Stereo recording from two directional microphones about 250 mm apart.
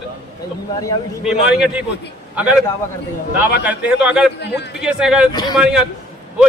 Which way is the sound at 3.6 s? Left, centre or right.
Centre.